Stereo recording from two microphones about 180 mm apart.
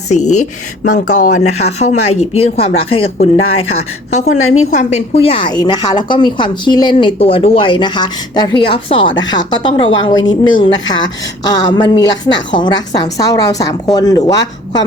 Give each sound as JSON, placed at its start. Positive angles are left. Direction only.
{"t": 0.1, "sound": "speech", "side_deg": 40}
{"t": 1.5, "sound": "speech", "side_deg": 35}